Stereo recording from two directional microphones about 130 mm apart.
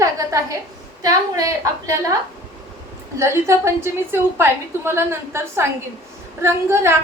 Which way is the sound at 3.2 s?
20° right (ahead or behind).